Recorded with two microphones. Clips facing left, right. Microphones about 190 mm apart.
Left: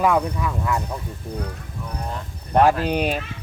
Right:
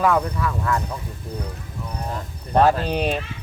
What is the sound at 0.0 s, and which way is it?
Speech, 15° left (ahead or behind).